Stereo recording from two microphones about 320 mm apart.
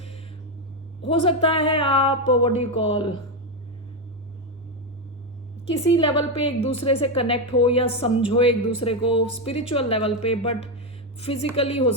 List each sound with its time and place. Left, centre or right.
1.0 s speech: centre
5.9 s speech: centre